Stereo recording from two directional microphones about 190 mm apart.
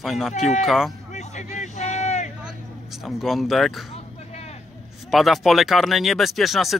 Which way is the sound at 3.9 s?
35° left (ahead or behind).